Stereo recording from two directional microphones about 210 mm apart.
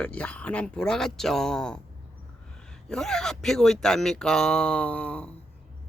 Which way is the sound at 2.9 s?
5° left (ahead or behind).